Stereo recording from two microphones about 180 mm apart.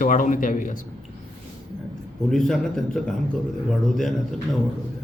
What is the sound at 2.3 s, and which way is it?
Speech, 5° left (ahead or behind).